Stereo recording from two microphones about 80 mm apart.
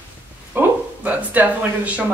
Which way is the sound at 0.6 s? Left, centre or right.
Right.